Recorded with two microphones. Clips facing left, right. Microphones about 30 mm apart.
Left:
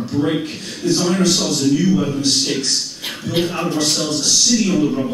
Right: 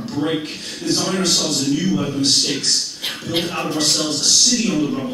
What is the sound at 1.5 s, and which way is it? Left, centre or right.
Speech, right.